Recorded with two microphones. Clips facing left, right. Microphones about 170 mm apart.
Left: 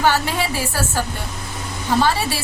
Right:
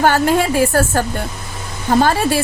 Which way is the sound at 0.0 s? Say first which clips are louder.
Right 5 dB; 50° right (ahead or behind).